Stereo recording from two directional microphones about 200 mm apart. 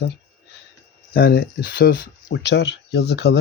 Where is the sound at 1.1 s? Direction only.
50° left (ahead or behind).